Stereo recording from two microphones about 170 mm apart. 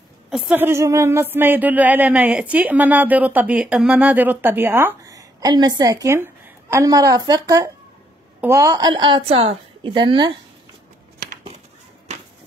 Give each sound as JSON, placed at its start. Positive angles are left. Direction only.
{"t": 0.3, "sound": "speech", "side_deg": -5}
{"t": 8.9, "sound": "a woman's voice", "side_deg": -30}